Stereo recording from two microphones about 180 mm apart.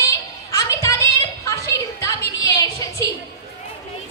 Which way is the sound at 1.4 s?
15° left (ahead or behind).